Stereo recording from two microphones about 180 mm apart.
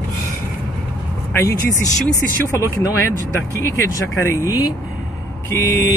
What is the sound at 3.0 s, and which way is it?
Speech, 15° left (ahead or behind).